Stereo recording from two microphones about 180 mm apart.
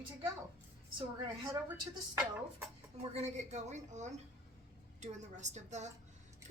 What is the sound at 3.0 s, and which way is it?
A woman's voice, 35° right (ahead or behind).